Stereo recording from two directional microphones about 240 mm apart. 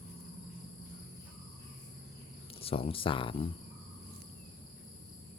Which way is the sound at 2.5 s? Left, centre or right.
Left.